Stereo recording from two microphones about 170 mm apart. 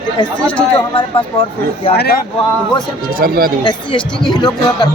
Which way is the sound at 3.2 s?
60° right (ahead or behind).